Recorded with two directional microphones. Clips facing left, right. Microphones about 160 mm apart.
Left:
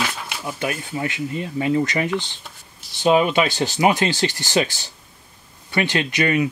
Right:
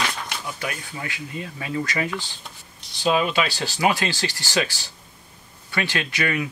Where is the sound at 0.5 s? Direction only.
25° left (ahead or behind).